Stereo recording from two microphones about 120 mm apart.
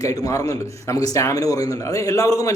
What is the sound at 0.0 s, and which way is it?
Speech, 30° left (ahead or behind).